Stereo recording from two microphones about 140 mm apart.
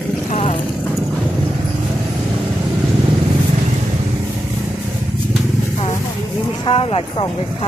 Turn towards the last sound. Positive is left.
turn(degrees=40)  # may be behind; listen again after turning